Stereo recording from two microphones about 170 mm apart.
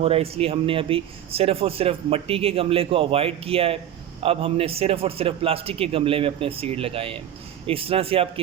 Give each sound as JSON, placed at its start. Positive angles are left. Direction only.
{"t": 0.0, "sound": "speech", "side_deg": -35}